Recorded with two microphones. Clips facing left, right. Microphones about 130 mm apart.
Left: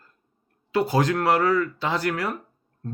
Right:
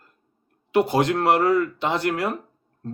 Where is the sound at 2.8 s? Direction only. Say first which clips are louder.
Right 2 dB; 30° right (ahead or behind).